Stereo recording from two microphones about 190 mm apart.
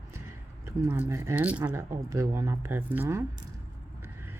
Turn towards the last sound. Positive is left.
turn(degrees=-15)  # may be behind; listen again after turning